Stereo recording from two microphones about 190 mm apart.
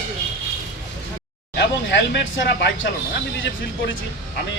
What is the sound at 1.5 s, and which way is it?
Speech, 65° left (ahead or behind).